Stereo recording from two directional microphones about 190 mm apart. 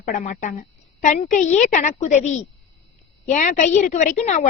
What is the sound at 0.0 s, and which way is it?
A woman's voice, 40° left (ahead or behind).